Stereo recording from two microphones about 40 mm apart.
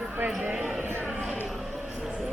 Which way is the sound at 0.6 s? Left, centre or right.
Right.